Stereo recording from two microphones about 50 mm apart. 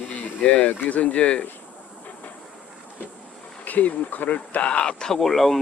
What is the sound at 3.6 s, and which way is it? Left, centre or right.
Speech, left.